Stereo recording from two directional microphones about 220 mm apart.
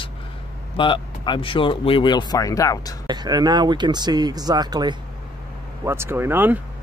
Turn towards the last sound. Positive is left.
turn(degrees=-10)  # may be behind; listen again after turning